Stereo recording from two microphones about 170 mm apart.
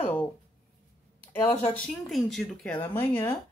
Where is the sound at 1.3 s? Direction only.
10° left (ahead or behind).